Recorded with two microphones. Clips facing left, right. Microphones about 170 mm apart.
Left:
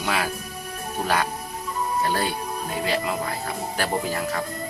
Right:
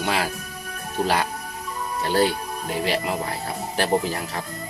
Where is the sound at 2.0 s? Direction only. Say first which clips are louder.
Right 6 dB; 30° right (ahead or behind).